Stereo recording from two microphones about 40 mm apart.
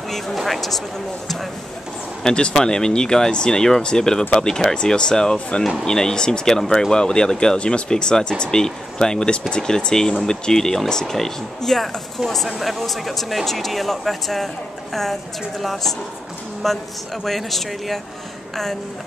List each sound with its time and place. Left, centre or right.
0.3 s speech: centre
2.2 s speech: centre